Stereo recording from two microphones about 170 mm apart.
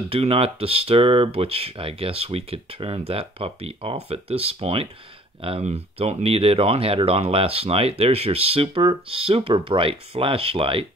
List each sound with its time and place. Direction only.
0.1 s speech: 35° right (ahead or behind)